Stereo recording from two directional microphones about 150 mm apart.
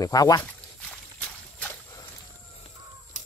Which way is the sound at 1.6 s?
20° left (ahead or behind).